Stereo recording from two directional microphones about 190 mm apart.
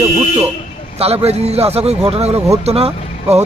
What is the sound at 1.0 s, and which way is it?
Speech, 35° right (ahead or behind).